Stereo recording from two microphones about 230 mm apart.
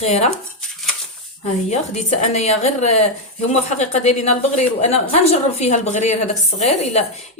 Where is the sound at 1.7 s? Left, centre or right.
Left.